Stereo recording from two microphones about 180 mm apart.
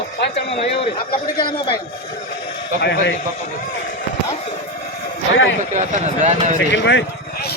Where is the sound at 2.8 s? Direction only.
65° left (ahead or behind).